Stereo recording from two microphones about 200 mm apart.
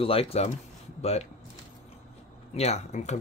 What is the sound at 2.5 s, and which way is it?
Speech, 35° left (ahead or behind).